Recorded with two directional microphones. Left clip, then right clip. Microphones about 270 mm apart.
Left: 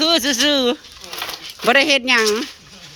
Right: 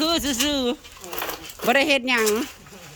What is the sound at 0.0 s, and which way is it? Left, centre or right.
Speech, centre.